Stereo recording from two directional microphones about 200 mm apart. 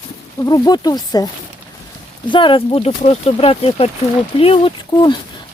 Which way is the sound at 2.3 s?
25° left (ahead or behind).